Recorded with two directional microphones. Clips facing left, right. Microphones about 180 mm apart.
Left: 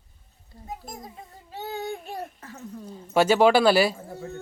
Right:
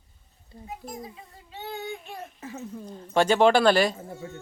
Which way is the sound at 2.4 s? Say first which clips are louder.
Right 5 dB; 20° right (ahead or behind).